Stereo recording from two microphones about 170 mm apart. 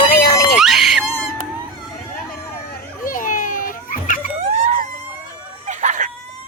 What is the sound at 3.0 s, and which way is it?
Children playing, 55° left (ahead or behind).